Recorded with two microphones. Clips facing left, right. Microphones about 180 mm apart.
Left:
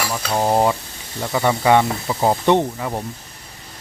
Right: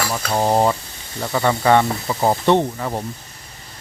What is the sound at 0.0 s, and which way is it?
Speech, centre (ahead or behind).